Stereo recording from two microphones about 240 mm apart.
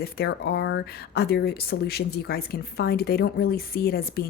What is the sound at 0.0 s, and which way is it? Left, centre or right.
A woman's voice, left.